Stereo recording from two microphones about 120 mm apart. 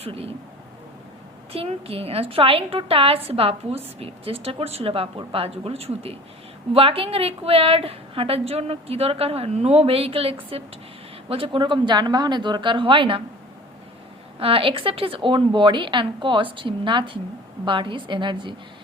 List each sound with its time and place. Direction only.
0.0 s a woman's voice: 55° right (ahead or behind)
1.5 s a woman's voice: 55° right (ahead or behind)
14.3 s a woman's voice: 50° right (ahead or behind)